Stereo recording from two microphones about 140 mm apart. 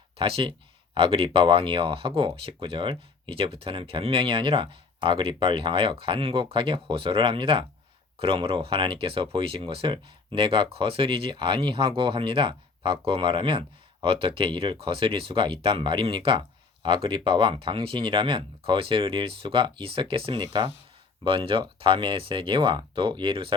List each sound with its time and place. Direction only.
0.2 s speech: 40° right (ahead or behind)